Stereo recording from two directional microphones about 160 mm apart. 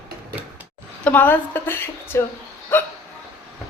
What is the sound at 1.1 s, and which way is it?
A woman's voice, 10° left (ahead or behind).